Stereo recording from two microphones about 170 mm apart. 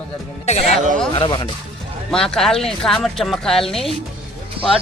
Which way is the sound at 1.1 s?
30° left (ahead or behind).